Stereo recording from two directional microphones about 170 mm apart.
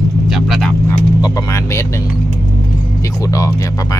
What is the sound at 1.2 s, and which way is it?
Speech, 15° left (ahead or behind).